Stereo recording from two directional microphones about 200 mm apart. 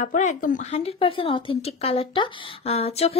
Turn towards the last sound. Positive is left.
turn(degrees=30)  # may be behind; listen again after turning